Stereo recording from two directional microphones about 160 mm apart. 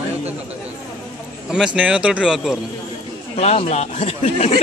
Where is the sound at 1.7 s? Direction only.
5° right (ahead or behind).